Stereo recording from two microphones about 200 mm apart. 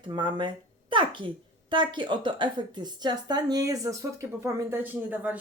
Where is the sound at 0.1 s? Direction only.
25° right (ahead or behind).